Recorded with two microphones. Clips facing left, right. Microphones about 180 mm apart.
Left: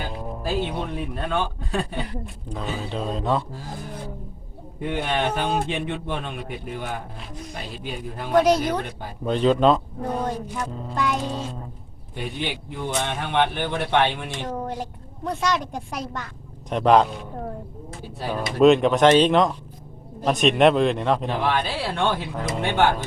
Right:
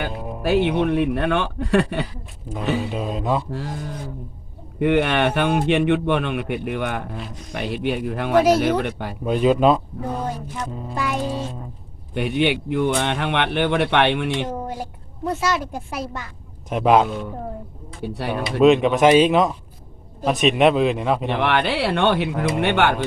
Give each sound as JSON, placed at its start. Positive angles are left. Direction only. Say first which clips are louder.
{"t": 0.2, "sound": "music", "louder": "right 2 dB", "side_deg": -10}
{"t": 0.4, "sound": "speech", "louder": "right 9 dB", "side_deg": -70}
{"t": 2.2, "sound": "a woman's voice", "louder": "right 2 dB", "side_deg": -5}
{"t": 2.8, "sound": "music", "louder": "right 2 dB", "side_deg": -10}
{"t": 4.8, "sound": "speech", "louder": "right 7 dB", "side_deg": -70}
{"t": 8.4, "sound": "a woman's voice", "louder": "right 2 dB", "side_deg": -5}
{"t": 8.8, "sound": "speech", "louder": "right 7 dB", "side_deg": -70}
{"t": 9.2, "sound": "music", "louder": "right 2 dB", "side_deg": -10}
{"t": 12.1, "sound": "speech", "louder": "right 9 dB", "side_deg": -65}
{"t": 14.4, "sound": "a woman's voice", "louder": "right 1 dB", "side_deg": -10}
{"t": 18.0, "sound": "speech", "louder": "right 4 dB", "side_deg": -70}
{"t": 18.6, "sound": "a woman's voice", "louder": "right 1 dB", "side_deg": 0}
{"t": 21.2, "sound": "speech", "louder": "right 4 dB", "side_deg": -70}